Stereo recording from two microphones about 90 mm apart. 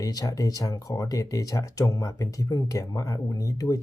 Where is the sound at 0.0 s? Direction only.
45° left (ahead or behind).